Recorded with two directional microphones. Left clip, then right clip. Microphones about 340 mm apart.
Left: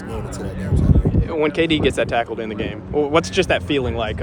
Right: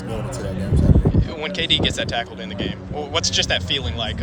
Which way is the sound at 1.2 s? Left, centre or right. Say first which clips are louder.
Left 6 dB; centre.